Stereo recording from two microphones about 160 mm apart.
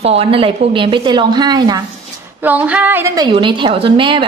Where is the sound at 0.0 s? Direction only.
40° right (ahead or behind).